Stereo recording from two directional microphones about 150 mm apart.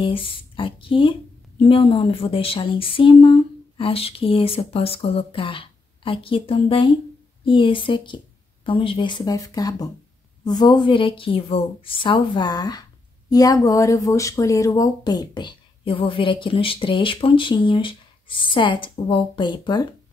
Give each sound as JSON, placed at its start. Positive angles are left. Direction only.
{"t": 0.0, "sound": "speech", "side_deg": 35}